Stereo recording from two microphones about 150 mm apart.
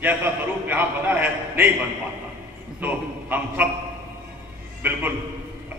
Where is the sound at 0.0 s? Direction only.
10° right (ahead or behind).